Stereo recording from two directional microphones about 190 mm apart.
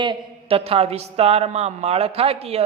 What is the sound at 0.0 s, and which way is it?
A man's voice, 25° right (ahead or behind).